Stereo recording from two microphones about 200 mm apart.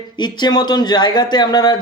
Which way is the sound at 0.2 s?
20° left (ahead or behind).